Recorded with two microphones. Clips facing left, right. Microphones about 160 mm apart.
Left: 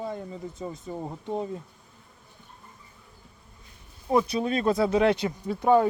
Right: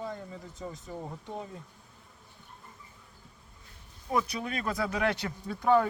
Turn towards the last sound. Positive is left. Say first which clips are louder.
# left 4 dB
turn(degrees=25)  # may be behind; listen again after turning